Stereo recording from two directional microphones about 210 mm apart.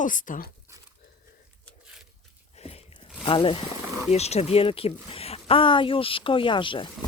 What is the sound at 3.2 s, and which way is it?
Speech, 25° left (ahead or behind).